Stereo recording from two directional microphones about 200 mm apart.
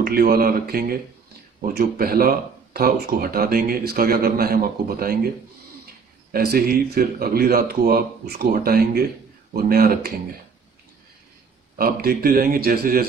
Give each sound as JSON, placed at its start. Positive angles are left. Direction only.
{"t": 0.0, "sound": "speech", "side_deg": -50}
{"t": 6.3, "sound": "speech", "side_deg": -50}
{"t": 11.8, "sound": "speech", "side_deg": -50}